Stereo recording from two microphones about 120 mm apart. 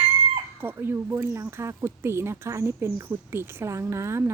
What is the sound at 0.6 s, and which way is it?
Speech, 20° right (ahead or behind).